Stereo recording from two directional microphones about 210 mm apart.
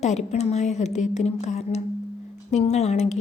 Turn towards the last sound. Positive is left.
turn(degrees=30)  # may be behind; listen again after turning